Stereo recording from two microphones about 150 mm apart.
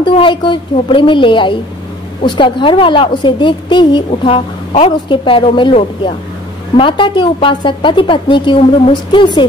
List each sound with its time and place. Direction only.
0.0 s a woman's voice: 35° left (ahead or behind)